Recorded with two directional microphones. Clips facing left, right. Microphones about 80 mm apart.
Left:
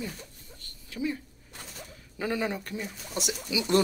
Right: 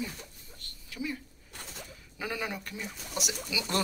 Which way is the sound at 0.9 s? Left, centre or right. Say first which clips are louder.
Left 5 dB; left.